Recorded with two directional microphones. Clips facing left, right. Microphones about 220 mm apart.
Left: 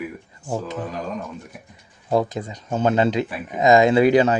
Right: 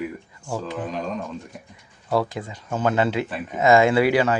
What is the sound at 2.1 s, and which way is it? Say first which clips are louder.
Speech: left 2 dB; 20° left (ahead or behind).